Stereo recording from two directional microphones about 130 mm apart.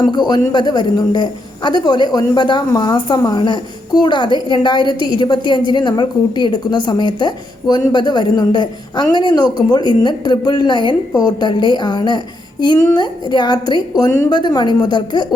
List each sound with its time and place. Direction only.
0.0 s a woman's voice: 35° left (ahead or behind)